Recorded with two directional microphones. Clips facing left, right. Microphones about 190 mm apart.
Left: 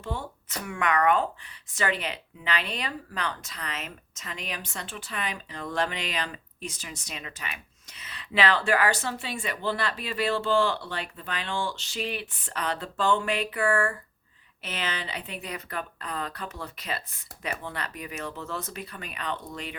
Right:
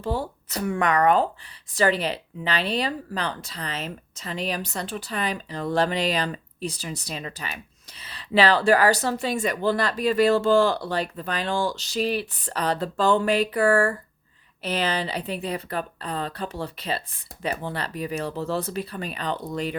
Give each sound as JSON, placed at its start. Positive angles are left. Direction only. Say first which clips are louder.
{"t": 0.0, "sound": "speech", "louder": "right 7 dB", "side_deg": -35}